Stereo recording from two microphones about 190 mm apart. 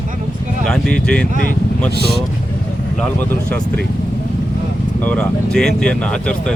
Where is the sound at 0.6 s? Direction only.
5° left (ahead or behind).